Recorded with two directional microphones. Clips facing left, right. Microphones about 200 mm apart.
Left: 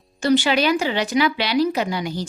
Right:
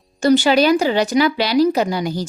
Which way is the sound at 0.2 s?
40° right (ahead or behind).